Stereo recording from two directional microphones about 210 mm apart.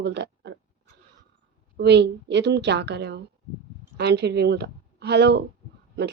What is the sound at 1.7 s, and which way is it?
A woman's voice, 55° right (ahead or behind).